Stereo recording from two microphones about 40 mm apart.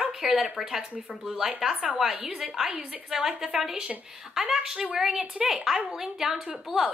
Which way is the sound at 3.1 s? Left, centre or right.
Centre.